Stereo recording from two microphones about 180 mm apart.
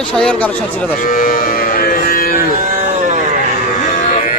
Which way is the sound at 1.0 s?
50° left (ahead or behind).